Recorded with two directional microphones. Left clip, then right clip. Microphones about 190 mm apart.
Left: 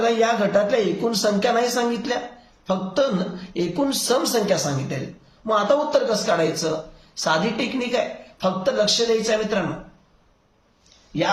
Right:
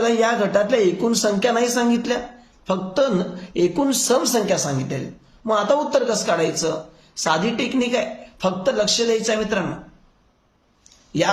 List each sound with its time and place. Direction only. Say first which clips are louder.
0.0 s speech: right 1 dB; 35° right (ahead or behind)